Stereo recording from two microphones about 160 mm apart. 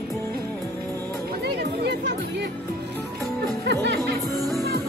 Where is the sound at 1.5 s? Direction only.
90° right.